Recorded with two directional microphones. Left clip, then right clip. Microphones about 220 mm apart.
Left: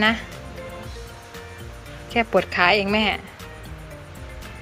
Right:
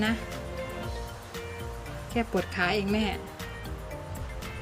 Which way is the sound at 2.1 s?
Centre (ahead or behind).